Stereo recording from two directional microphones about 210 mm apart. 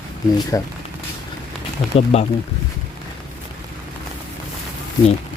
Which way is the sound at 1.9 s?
30° left (ahead or behind).